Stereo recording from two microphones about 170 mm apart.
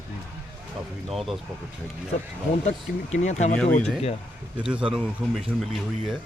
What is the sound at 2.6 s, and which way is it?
Speech, 40° left (ahead or behind).